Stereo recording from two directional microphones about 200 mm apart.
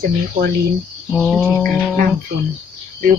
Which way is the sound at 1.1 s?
Centre (ahead or behind).